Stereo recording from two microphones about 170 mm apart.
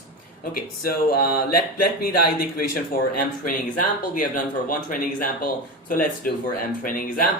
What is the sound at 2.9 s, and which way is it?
Speech, 60° left (ahead or behind).